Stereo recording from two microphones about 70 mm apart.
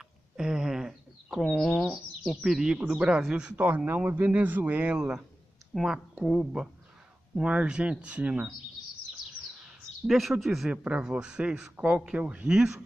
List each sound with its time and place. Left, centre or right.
0.4 s a sound: centre
1.4 s speech: centre
2.4 s a man's voice: centre
3.5 s speech: right
5.7 s a man's voice: centre
10.0 s speech: centre
10.7 s a man's voice: centre